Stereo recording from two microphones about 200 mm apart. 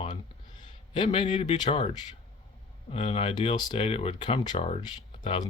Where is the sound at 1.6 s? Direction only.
25° left (ahead or behind).